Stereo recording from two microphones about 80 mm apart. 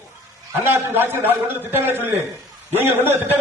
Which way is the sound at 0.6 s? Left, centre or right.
Right.